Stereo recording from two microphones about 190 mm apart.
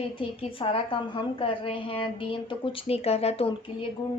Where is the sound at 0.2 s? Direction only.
30° left (ahead or behind).